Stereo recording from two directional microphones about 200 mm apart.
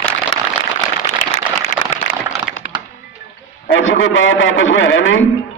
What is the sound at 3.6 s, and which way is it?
A man's voice, 70° left (ahead or behind).